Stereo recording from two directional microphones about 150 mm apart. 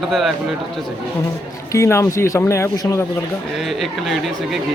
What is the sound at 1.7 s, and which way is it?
Speech, 20° left (ahead or behind).